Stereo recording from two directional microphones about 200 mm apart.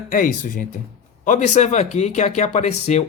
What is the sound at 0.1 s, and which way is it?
Speech, 40° left (ahead or behind).